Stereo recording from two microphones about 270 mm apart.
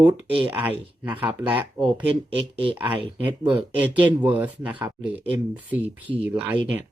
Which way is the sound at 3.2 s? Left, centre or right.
Centre.